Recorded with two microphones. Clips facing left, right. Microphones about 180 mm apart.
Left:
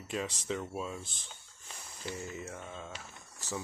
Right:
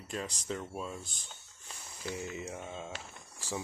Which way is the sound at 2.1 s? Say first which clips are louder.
Right 3 dB; 15° right (ahead or behind).